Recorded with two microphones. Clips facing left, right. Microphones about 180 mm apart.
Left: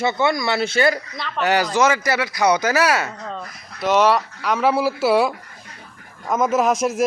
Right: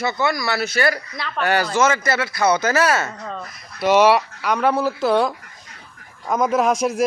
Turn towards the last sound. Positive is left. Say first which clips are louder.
# even
turn(degrees=0)  # may be behind; listen again after turning